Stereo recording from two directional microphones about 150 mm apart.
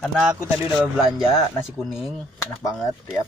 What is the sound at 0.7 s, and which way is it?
Speech, 5° right (ahead or behind).